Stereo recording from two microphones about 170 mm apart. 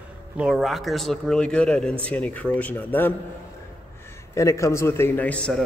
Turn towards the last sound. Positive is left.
turn(degrees=5)  # may be behind; listen again after turning